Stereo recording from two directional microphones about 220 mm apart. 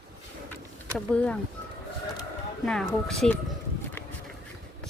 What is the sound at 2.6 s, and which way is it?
Speech, centre (ahead or behind).